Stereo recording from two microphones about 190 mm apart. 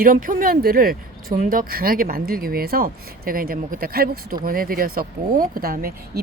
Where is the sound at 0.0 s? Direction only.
45° right (ahead or behind).